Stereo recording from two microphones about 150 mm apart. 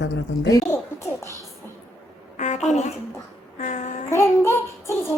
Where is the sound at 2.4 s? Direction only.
50° left (ahead or behind).